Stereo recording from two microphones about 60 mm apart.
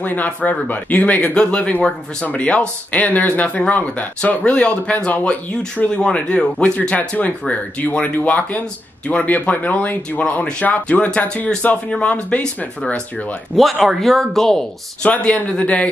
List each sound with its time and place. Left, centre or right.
0.0 s speech: left
1.3 s speech: centre
13.6 s speech: centre
15.0 s speech: left